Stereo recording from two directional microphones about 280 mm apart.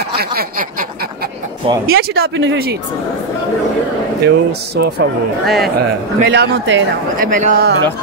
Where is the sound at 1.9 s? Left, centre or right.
Right.